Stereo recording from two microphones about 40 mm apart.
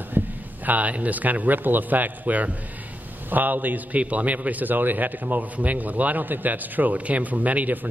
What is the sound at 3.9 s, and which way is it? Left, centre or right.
A man's voice, right.